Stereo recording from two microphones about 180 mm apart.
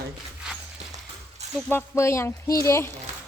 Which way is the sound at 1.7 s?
15° left (ahead or behind).